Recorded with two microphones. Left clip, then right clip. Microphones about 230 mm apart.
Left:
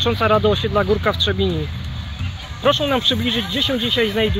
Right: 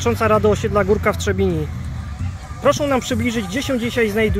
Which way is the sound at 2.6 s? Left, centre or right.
Centre.